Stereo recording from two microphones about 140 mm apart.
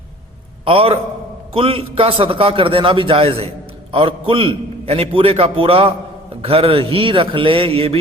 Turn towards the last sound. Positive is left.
turn(degrees=-45)  # may be behind; listen again after turning